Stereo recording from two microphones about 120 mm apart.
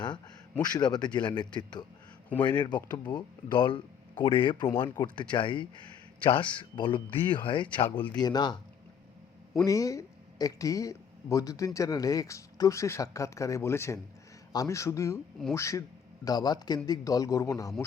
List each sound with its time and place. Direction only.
0.6 s speech: 35° left (ahead or behind)
5.0 s speech: 35° left (ahead or behind)
5.3 s speech: 45° left (ahead or behind)
7.9 s speech: 15° left (ahead or behind)
8.1 s speech: 35° left (ahead or behind)